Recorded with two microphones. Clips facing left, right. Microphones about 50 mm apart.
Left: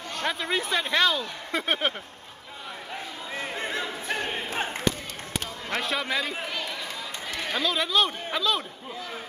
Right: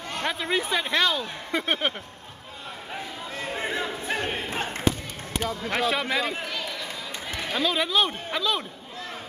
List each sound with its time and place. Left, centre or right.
0.2 s speech: centre
3.5 s choir: centre
4.6 s basketball bounce: centre
5.7 s speech: centre